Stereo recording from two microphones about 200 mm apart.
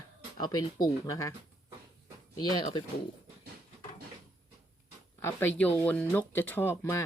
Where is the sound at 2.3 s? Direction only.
20° left (ahead or behind).